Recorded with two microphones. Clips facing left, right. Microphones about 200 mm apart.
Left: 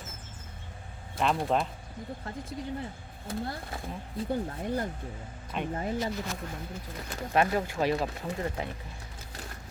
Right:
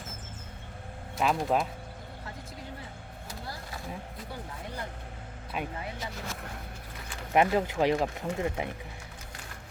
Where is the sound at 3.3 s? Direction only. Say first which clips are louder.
Left 7 dB; 55° left (ahead or behind).